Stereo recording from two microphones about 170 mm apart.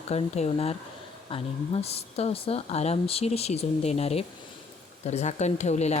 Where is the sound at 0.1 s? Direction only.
40° left (ahead or behind).